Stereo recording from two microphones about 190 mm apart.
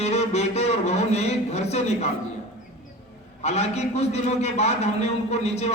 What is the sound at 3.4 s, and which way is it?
A man's voice, 35° left (ahead or behind).